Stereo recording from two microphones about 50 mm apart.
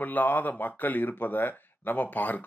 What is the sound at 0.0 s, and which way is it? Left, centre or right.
Speech, left.